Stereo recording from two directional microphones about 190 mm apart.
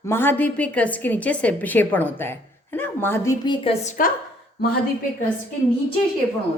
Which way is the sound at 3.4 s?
25° left (ahead or behind).